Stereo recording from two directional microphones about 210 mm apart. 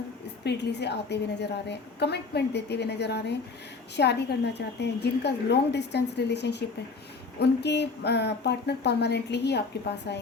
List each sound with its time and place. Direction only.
0.4 s a woman's voice: 55° left (ahead or behind)